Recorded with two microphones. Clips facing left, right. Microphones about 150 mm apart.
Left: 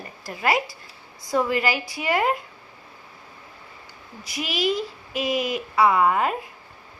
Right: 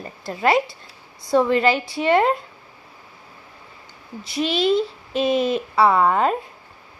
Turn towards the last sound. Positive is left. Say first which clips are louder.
# right 2 dB
turn(degrees=-30)  # may be behind; listen again after turning